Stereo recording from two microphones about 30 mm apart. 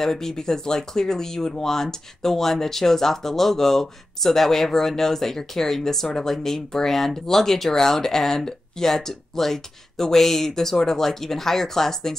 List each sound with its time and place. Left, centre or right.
0.0 s speech: centre